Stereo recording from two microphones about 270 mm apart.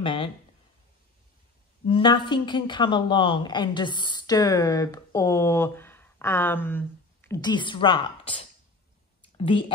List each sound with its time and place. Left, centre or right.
0.0 s a woman's voice: centre
1.9 s a woman's voice: centre
9.4 s speech: centre